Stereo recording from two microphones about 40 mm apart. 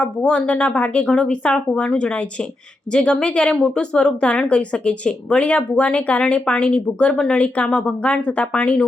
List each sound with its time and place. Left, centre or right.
0.0 s a woman's voice: left